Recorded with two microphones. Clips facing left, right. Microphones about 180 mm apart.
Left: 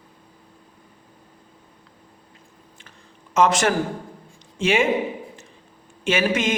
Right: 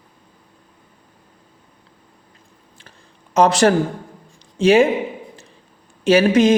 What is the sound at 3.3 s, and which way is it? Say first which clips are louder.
A woman's voice: right 5 dB; 35° right (ahead or behind).